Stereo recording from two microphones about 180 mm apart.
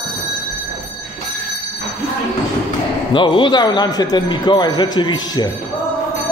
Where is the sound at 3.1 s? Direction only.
25° left (ahead or behind).